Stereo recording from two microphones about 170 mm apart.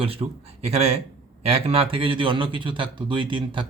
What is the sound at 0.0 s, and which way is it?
Speech, 35° right (ahead or behind).